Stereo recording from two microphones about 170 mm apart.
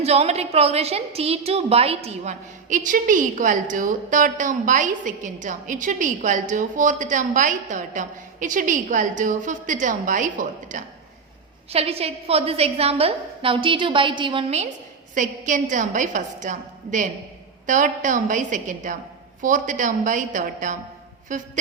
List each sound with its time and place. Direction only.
0.0 s a woman's voice: 40° right (ahead or behind)
11.7 s a woman's voice: 35° right (ahead or behind)
15.1 s a woman's voice: 50° right (ahead or behind)